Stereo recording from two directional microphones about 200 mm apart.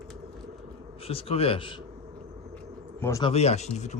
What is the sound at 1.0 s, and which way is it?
Speech, 30° left (ahead or behind).